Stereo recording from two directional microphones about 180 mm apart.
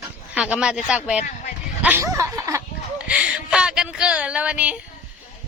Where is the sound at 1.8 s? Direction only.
15° right (ahead or behind).